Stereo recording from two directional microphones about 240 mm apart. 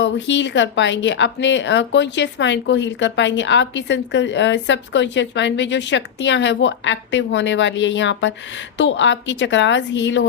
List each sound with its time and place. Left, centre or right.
0.0 s speech: left